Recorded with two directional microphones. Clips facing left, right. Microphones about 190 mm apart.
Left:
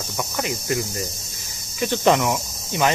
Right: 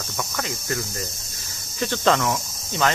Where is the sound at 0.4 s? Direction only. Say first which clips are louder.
Left 5 dB; 15° left (ahead or behind).